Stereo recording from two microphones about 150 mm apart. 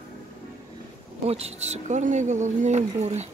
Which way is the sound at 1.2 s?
45° right (ahead or behind).